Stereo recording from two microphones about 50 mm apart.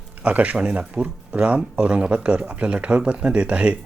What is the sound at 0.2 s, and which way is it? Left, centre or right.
Speech, right.